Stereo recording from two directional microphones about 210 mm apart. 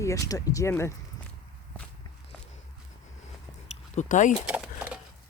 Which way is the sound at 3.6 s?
35° left (ahead or behind).